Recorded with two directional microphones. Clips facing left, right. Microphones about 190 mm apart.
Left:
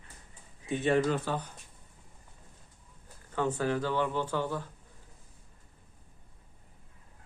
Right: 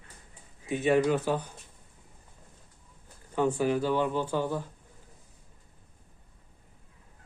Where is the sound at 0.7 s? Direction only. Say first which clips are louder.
Right 3 dB; 5° right (ahead or behind).